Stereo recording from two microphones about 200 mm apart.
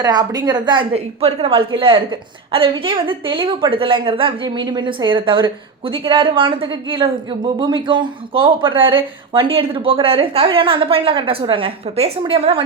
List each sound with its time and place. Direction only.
0.0 s a woman's voice: 20° right (ahead or behind)